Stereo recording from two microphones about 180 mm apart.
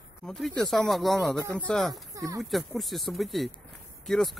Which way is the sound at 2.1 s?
20° right (ahead or behind).